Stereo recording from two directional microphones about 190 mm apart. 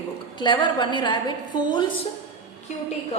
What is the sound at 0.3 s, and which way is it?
A woman's voice, 25° left (ahead or behind).